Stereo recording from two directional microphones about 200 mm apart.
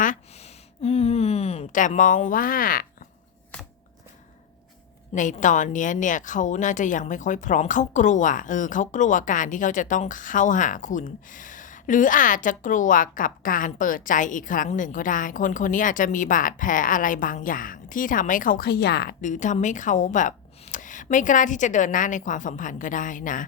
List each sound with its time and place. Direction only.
0.0 s a sound: 35° left (ahead or behind)
5.1 s a woman's voice: 40° left (ahead or behind)
19.2 s a woman's voice: 40° left (ahead or behind)